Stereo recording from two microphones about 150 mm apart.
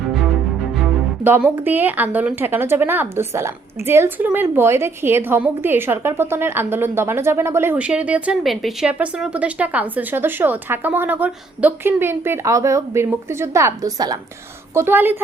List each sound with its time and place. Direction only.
1.2 s speech: 10° right (ahead or behind)